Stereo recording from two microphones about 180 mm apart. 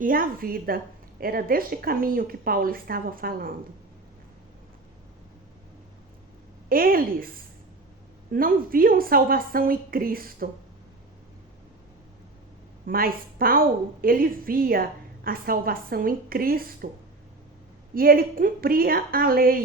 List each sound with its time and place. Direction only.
0.0 s a woman's voice: 50° right (ahead or behind)
6.7 s a woman's voice: 55° right (ahead or behind)
8.3 s a woman's voice: 55° right (ahead or behind)
12.8 s a woman's voice: 55° right (ahead or behind)
17.9 s a woman's voice: 55° right (ahead or behind)